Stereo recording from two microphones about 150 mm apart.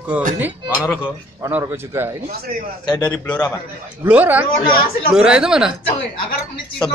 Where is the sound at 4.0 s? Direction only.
10° right (ahead or behind).